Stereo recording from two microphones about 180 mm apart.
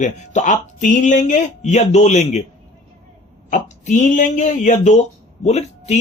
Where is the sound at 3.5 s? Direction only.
40° left (ahead or behind).